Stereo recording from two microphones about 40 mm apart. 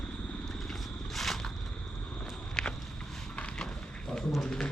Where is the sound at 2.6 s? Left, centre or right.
Centre.